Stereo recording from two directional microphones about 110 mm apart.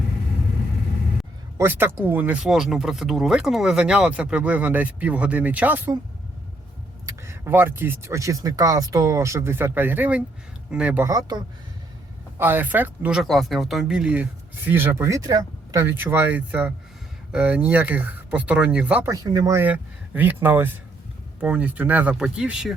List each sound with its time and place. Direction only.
1.5 s speech: 20° right (ahead or behind)
7.0 s speech: 25° right (ahead or behind); by 11.0 s 10° right (ahead or behind)
11.0 s speech: 35° right (ahead or behind)
12.4 s speech: 20° right (ahead or behind)
13.2 s speech: centre (ahead or behind)
19.2 s speech: 35° right (ahead or behind)
19.5 s speech: 15° right (ahead or behind)